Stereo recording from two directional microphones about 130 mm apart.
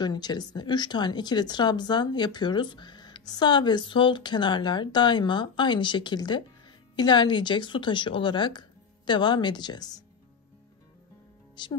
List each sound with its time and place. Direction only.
0.0 s speech: 35° left (ahead or behind)
11.6 s speech: 35° left (ahead or behind)